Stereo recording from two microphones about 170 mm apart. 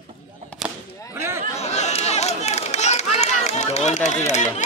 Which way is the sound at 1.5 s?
40° left (ahead or behind).